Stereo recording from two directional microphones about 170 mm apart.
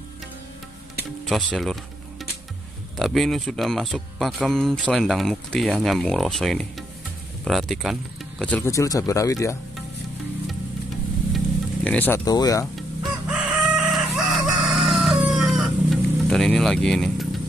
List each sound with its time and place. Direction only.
1.2 s music: centre (ahead or behind)
3.0 s speech: centre (ahead or behind); by 9.6 s 20° left (ahead or behind)
11.3 s music: 5° left (ahead or behind)
12.3 s speech: 20° left (ahead or behind)
12.7 s chicken: centre (ahead or behind)